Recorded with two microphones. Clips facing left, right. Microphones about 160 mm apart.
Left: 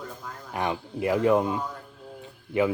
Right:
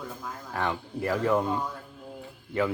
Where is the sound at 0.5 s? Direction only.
15° left (ahead or behind).